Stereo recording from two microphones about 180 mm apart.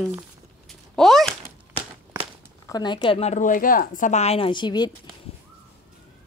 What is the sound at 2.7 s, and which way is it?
Speech, 25° left (ahead or behind).